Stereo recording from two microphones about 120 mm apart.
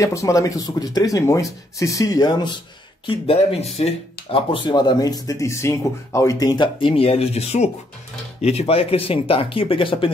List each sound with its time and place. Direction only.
0.0 s speech: 25° left (ahead or behind)
3.1 s speech: 55° left (ahead or behind)